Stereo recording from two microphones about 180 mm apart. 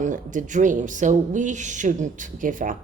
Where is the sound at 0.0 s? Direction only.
45° right (ahead or behind).